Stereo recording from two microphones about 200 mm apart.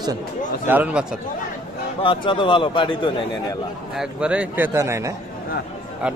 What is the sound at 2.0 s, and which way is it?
A man's voice, 25° left (ahead or behind).